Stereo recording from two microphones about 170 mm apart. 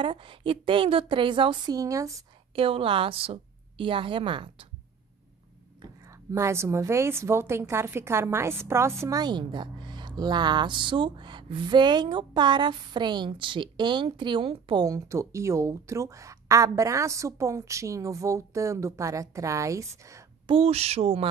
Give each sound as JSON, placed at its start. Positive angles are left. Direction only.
{"t": 0.0, "sound": "a woman's voice", "side_deg": -30}
{"t": 2.5, "sound": "a woman's voice", "side_deg": -30}
{"t": 6.3, "sound": "a woman's voice", "side_deg": -15}
{"t": 20.4, "sound": "a woman's voice", "side_deg": -35}